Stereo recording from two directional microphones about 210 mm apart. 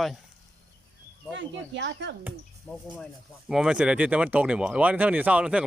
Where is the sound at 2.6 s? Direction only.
5° left (ahead or behind).